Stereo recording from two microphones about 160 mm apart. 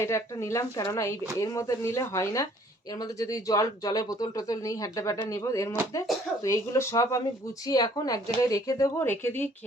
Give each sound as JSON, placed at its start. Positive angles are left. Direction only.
{"t": 0.0, "sound": "speech", "side_deg": 15}